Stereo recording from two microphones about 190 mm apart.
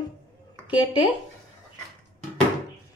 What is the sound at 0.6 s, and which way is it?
Speech, 25° left (ahead or behind).